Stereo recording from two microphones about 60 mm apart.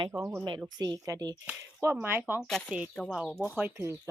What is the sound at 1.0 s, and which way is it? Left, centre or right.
Speech, right.